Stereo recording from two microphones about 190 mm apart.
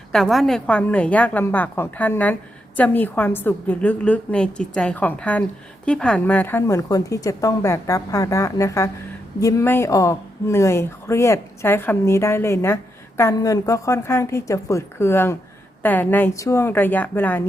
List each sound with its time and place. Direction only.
0.1 s speech: centre (ahead or behind)